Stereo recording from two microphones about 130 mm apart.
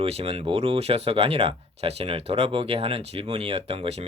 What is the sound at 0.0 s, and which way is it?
Speech, 50° right (ahead or behind).